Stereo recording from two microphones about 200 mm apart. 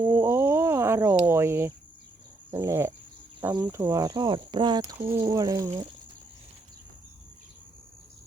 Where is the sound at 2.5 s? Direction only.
15° right (ahead or behind).